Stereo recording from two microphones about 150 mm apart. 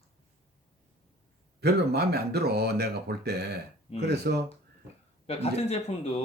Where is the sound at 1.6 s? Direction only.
90° right.